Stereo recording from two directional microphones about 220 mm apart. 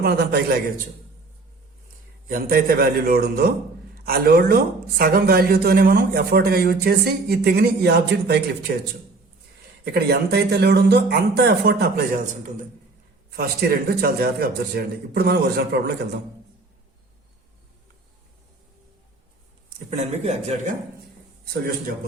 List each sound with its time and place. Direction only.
0.0 s speech: 45° right (ahead or behind)
2.2 s speech: 40° right (ahead or behind)
9.9 s speech: 45° right (ahead or behind)
19.9 s a man's voice: 30° right (ahead or behind)
21.4 s speech: 45° right (ahead or behind)